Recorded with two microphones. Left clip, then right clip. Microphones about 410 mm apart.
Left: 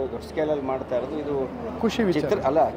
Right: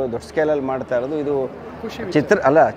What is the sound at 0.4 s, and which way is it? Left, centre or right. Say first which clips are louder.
Speech: right 6 dB; right.